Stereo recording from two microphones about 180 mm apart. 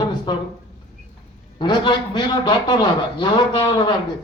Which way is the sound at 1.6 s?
25° left (ahead or behind).